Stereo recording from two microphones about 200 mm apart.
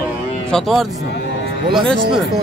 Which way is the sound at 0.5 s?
Centre (ahead or behind).